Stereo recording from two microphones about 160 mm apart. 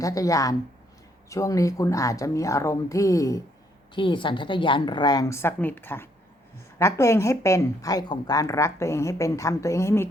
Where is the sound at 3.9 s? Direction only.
30° left (ahead or behind).